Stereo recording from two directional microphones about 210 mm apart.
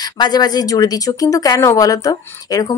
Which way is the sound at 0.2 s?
20° left (ahead or behind).